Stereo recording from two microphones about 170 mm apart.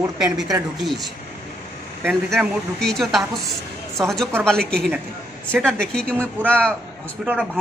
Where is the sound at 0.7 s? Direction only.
Centre (ahead or behind).